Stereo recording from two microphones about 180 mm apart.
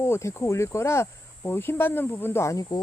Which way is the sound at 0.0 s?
15° left (ahead or behind).